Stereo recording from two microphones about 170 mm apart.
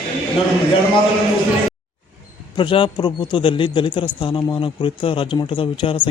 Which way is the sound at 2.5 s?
30° left (ahead or behind).